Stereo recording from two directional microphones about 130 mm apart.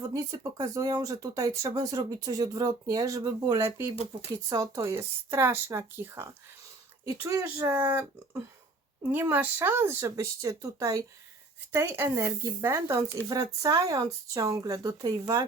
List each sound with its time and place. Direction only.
0.1 s speech: 25° right (ahead or behind)